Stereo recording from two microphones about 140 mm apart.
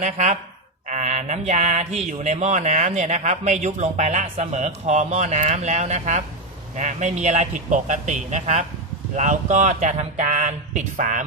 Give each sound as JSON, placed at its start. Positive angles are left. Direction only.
{"t": 0.0, "sound": "speech", "side_deg": -60}
{"t": 0.9, "sound": "a sound", "side_deg": -60}
{"t": 2.0, "sound": "speech", "side_deg": -55}